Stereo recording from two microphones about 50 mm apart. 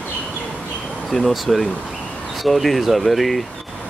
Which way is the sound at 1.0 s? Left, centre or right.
Centre.